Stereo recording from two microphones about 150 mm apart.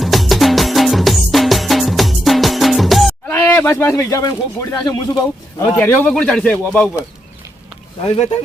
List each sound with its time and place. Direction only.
0.0 s music: centre (ahead or behind)
3.2 s speech: 10° left (ahead or behind)
5.6 s speech: 10° left (ahead or behind)